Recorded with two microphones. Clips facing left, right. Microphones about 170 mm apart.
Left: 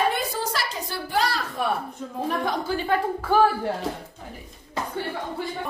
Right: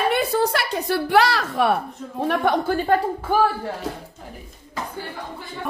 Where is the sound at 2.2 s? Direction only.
65° right (ahead or behind).